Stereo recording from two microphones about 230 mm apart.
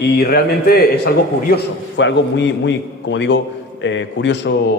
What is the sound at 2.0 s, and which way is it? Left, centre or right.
A man's voice, left.